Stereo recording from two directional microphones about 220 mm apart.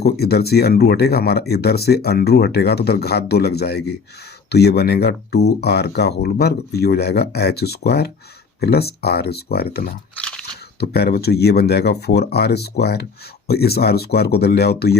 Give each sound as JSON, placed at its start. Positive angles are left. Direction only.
{"t": 0.0, "sound": "speech", "side_deg": 45}
{"t": 10.2, "sound": "crunch", "side_deg": 5}
{"t": 10.8, "sound": "speech", "side_deg": 45}